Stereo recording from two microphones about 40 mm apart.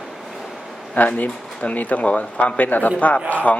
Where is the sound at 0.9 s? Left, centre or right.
Left.